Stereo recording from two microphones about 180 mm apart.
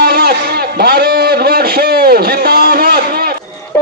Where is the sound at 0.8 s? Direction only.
60° right (ahead or behind).